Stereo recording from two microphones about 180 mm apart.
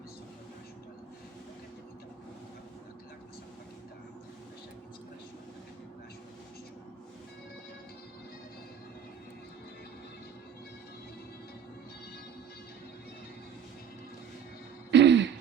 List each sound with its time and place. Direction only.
14.8 s throat clearing: 75° right (ahead or behind)